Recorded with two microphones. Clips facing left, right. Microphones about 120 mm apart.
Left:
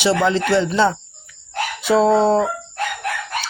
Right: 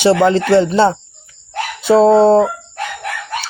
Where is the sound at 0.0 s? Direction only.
40° right (ahead or behind).